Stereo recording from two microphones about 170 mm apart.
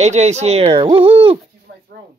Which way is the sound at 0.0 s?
40° right (ahead or behind).